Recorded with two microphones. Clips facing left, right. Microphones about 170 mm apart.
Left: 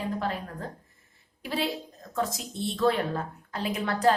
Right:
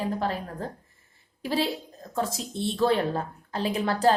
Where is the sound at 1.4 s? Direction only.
35° right (ahead or behind).